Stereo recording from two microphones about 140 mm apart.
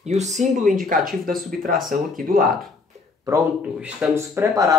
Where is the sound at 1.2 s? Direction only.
90° right.